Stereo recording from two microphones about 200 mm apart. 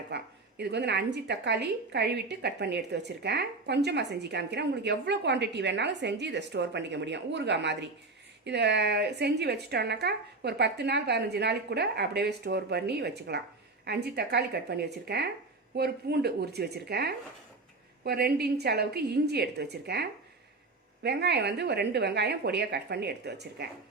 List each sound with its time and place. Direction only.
0.1 s a woman's voice: 55° right (ahead or behind)